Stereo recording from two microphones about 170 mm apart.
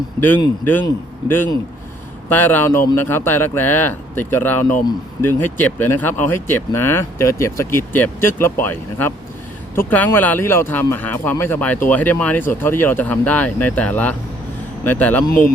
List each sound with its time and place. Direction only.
0.6 s speech: 10° left (ahead or behind)
1.2 s a man's voice: 25° left (ahead or behind)
2.3 s speech: 10° left (ahead or behind)